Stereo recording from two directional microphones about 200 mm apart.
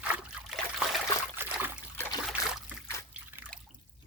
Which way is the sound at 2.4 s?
15° left (ahead or behind).